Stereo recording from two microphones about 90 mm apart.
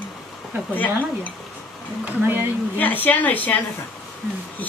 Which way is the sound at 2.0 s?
20° right (ahead or behind).